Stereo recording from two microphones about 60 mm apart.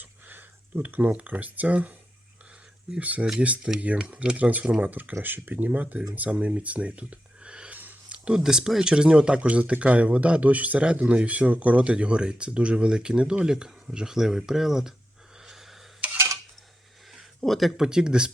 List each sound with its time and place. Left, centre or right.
0.0 s speech: right
3.0 s speech: right
7.8 s a sound: right
8.2 s speech: centre
17.4 s speech: centre